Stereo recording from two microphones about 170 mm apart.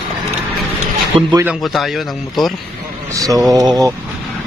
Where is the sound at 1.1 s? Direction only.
35° right (ahead or behind).